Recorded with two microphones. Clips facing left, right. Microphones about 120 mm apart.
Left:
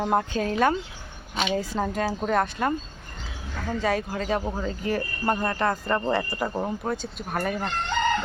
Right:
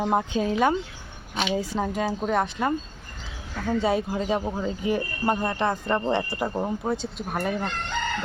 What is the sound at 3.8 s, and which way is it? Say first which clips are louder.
Speech: even; 15° right (ahead or behind).